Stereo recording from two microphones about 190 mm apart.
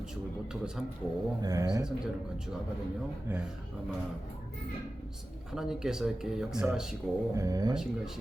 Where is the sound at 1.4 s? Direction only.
20° right (ahead or behind).